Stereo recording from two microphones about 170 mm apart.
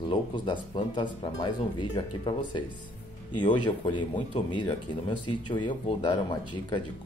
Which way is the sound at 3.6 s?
30° left (ahead or behind).